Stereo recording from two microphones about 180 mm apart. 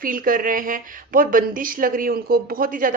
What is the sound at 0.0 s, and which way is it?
Speech, 50° right (ahead or behind).